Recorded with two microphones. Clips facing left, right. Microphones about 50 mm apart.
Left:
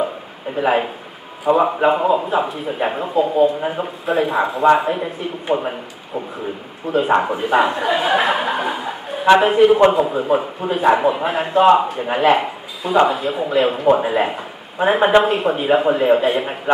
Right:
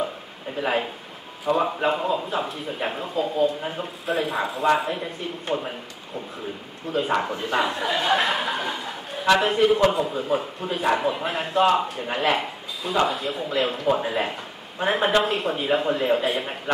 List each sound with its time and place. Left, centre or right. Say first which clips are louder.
0.6 s a man's voice: left 7 dB; centre
4.0 s a man's voice: left 7 dB; centre
6.9 s a man's voice: left 7 dB; centre
7.2 s a sound: left 8 dB; centre
9.4 s a man's voice: left 7 dB; centre